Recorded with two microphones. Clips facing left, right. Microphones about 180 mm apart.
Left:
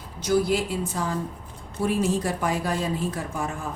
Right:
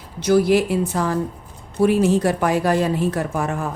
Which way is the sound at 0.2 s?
75° right (ahead or behind).